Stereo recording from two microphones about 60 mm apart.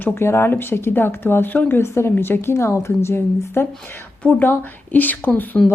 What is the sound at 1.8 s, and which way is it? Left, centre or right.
Speech, left.